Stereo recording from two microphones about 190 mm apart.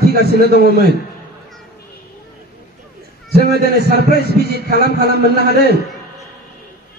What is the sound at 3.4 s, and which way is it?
A man's voice, 55° right (ahead or behind).